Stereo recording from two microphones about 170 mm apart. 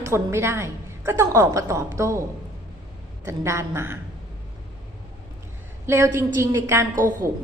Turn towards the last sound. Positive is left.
turn(degrees=-50)  # may be behind; listen again after turning